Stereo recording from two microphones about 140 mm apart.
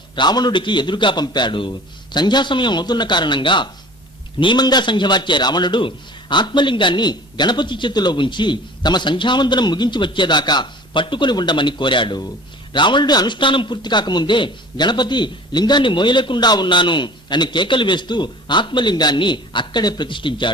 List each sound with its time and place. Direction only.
0.2 s a man's voice: 30° left (ahead or behind)